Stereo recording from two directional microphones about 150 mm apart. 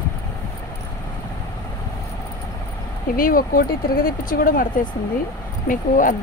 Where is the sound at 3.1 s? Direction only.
70° left (ahead or behind).